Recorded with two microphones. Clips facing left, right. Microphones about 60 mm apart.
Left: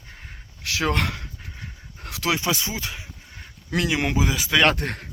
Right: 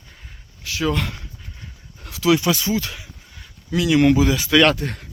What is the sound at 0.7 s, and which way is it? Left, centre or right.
Speech, left.